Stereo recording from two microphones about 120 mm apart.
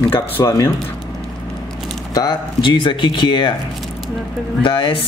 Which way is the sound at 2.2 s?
40° left (ahead or behind).